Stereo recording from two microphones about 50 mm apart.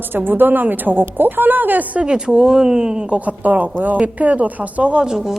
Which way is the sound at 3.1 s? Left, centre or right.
Right.